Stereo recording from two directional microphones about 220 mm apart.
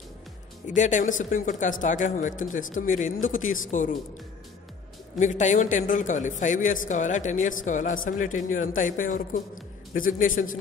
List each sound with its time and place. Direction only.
0.7 s a woman's voice: 35° left (ahead or behind)
5.2 s a woman's voice: 35° left (ahead or behind)